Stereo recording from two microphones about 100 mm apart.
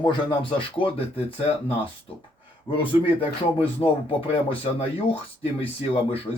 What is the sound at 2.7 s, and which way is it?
Speech, 60° left (ahead or behind).